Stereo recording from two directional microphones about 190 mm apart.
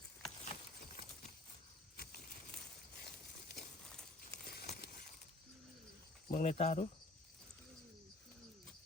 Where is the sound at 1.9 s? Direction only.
55° left (ahead or behind).